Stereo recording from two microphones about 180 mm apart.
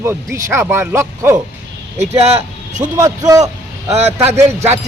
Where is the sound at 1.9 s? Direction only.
35° right (ahead or behind).